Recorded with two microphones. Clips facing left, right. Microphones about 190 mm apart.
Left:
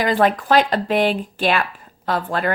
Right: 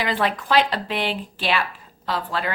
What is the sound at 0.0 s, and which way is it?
A woman's voice, 45° left (ahead or behind).